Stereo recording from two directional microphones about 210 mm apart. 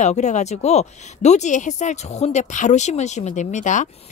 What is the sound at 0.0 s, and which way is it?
A woman's voice, 35° left (ahead or behind).